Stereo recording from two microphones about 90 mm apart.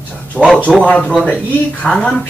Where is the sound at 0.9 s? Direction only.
15° left (ahead or behind).